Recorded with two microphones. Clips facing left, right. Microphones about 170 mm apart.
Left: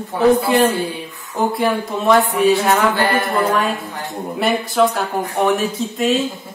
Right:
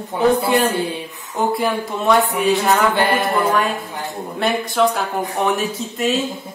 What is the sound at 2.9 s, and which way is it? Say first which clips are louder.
Speech: even; 20° right (ahead or behind).